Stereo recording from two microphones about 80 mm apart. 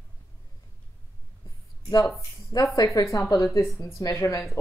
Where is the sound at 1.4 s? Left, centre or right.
Left.